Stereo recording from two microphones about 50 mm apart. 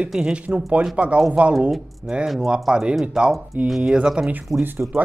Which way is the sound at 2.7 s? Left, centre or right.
Centre.